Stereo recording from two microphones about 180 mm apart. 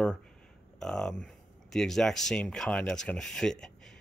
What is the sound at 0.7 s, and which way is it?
Speech, centre (ahead or behind).